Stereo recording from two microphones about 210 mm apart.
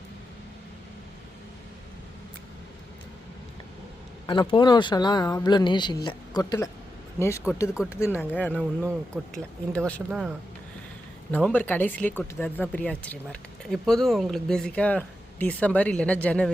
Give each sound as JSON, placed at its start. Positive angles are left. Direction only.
{"t": 4.3, "sound": "speech", "side_deg": 20}
{"t": 10.1, "sound": "speech", "side_deg": -5}
{"t": 11.3, "sound": "speech", "side_deg": 10}